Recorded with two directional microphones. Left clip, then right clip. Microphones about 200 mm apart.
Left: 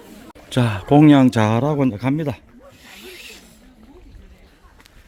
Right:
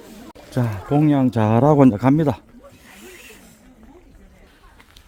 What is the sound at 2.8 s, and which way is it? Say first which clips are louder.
Snake: left 5 dB; 5° left (ahead or behind).